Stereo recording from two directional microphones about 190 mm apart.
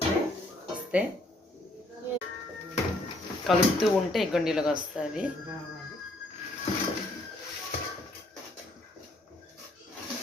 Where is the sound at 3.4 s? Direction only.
Centre (ahead or behind).